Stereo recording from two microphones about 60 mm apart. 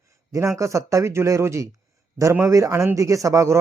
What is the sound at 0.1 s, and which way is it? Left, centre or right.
Speech, right.